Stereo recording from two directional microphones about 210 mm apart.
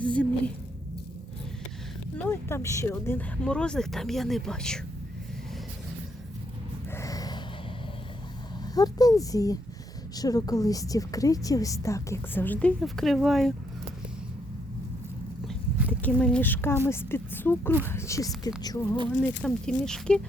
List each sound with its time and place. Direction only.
0.0 s a woman's voice: 5° left (ahead or behind)
2.1 s speech: 10° left (ahead or behind)
6.9 s a sound: 15° left (ahead or behind)
8.6 s a woman's voice: 20° left (ahead or behind); by 13.5 s centre (ahead or behind)
15.4 s a sound: 5° left (ahead or behind)
16.8 s a woman's voice: 10° left (ahead or behind)
19.4 s speech: 5° left (ahead or behind)